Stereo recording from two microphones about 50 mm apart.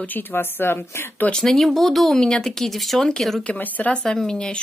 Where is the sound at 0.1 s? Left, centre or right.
Left.